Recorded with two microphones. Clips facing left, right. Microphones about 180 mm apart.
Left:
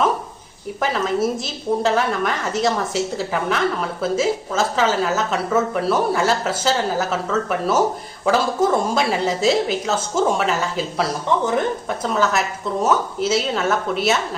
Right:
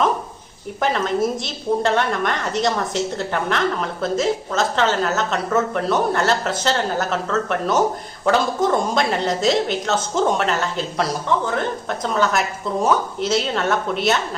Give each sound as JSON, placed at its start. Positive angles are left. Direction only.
{"t": 0.8, "sound": "a woman's voice", "side_deg": 0}
{"t": 11.4, "sound": "speech", "side_deg": 15}
{"t": 12.0, "sound": "a woman's voice", "side_deg": 5}